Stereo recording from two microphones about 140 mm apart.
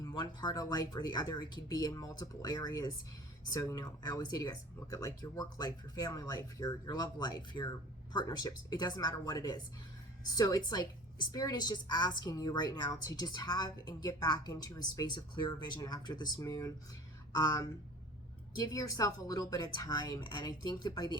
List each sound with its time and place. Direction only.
0.0 s a woman's voice: 30° left (ahead or behind)